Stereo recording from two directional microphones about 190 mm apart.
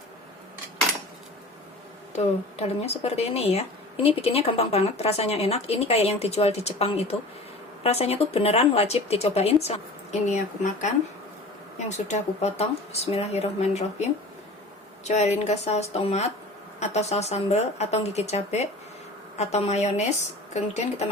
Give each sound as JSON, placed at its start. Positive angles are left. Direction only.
{"t": 2.1, "sound": "speech", "side_deg": 35}